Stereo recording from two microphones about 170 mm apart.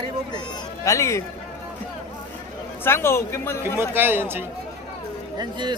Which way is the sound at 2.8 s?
15° left (ahead or behind).